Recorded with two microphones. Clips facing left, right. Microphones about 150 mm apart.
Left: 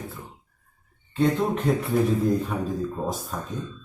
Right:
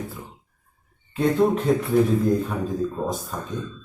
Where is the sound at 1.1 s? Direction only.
Centre (ahead or behind).